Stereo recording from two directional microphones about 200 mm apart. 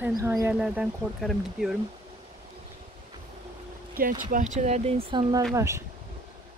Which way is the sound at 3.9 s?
45° right (ahead or behind).